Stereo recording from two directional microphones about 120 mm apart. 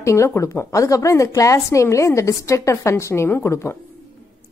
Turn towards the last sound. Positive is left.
turn(degrees=20)  # may be behind; listen again after turning